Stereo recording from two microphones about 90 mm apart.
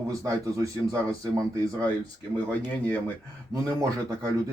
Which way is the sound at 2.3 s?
15° left (ahead or behind).